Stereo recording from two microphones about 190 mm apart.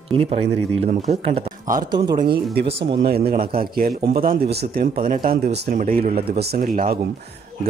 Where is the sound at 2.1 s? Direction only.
55° right (ahead or behind).